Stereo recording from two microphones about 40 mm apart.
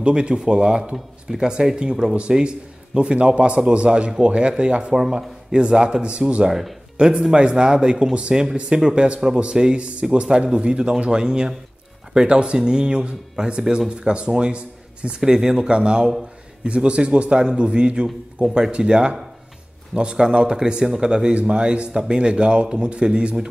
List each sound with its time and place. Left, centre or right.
0.0 s speech: right